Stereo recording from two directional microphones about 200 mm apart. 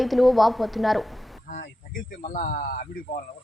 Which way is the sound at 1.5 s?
45° left (ahead or behind).